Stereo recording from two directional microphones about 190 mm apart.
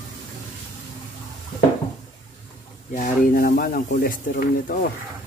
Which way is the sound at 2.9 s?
45° left (ahead or behind).